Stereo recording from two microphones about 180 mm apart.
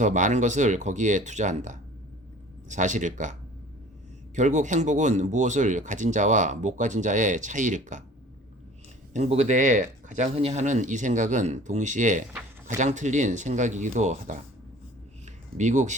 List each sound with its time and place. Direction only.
0.0 s speech: 45° right (ahead or behind)
4.4 s speech: 40° right (ahead or behind)
9.1 s speech: 40° right (ahead or behind)
15.5 s speech: 40° right (ahead or behind)